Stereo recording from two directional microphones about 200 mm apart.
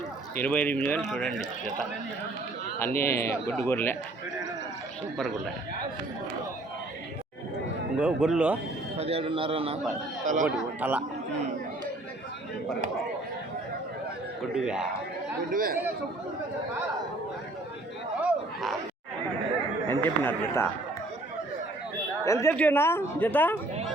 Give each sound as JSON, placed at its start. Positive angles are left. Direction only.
{"t": 0.3, "sound": "speech", "side_deg": 10}
{"t": 2.7, "sound": "speech", "side_deg": 10}
{"t": 7.9, "sound": "speech", "side_deg": -5}
{"t": 9.0, "sound": "a man's voice", "side_deg": -30}
{"t": 10.2, "sound": "speech", "side_deg": -40}
{"t": 10.8, "sound": "speech", "side_deg": -10}
{"t": 14.5, "sound": "speech", "side_deg": -5}
{"t": 15.5, "sound": "speech", "side_deg": -45}
{"t": 18.2, "sound": "a sound", "side_deg": 0}
{"t": 19.9, "sound": "speech", "side_deg": 10}
{"t": 22.2, "sound": "speech", "side_deg": 15}